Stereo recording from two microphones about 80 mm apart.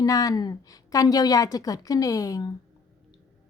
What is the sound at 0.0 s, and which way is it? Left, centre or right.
A woman's voice, left.